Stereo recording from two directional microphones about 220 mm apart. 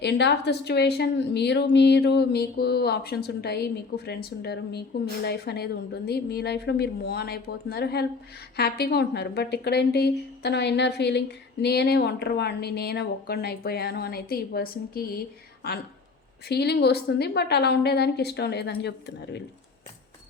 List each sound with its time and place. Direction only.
0.0 s a woman's voice: 50° left (ahead or behind)
16.5 s a woman's voice: 45° left (ahead or behind)